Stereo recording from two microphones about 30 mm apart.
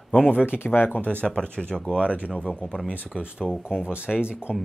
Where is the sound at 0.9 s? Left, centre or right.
Left.